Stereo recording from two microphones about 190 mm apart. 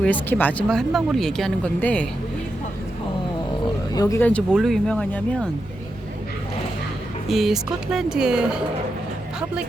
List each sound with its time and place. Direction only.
0.0 s speech: 10° left (ahead or behind)
3.9 s speech: 15° left (ahead or behind)
7.3 s speech: centre (ahead or behind)